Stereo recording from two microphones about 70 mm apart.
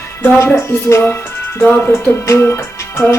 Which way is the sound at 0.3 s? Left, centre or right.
Left.